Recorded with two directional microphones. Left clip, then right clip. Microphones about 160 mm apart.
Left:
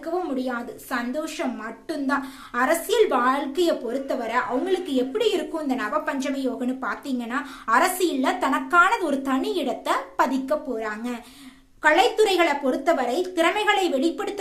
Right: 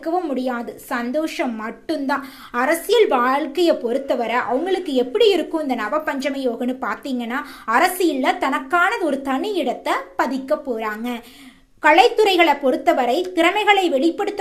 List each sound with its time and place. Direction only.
0.0 s a woman's voice: 30° right (ahead or behind); by 10.8 s 15° right (ahead or behind)
10.8 s a woman's voice: 25° right (ahead or behind)